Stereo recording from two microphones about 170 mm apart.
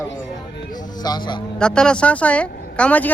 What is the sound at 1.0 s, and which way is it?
Speech, 25° left (ahead or behind).